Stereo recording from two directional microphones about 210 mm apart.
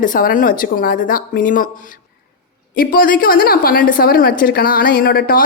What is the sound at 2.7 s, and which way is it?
A woman's voice, 40° left (ahead or behind).